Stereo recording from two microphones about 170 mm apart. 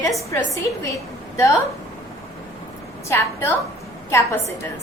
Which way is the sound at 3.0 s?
15° left (ahead or behind).